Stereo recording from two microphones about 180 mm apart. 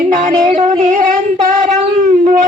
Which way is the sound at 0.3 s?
45° right (ahead or behind).